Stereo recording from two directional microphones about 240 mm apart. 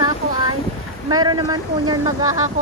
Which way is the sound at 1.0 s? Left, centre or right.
Centre.